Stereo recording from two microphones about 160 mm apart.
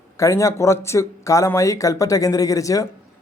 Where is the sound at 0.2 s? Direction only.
20° left (ahead or behind).